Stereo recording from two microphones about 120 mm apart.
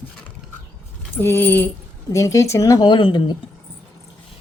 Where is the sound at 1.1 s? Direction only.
20° left (ahead or behind).